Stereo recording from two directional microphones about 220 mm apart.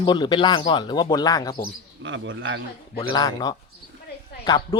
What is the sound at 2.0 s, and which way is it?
Speech, 55° right (ahead or behind).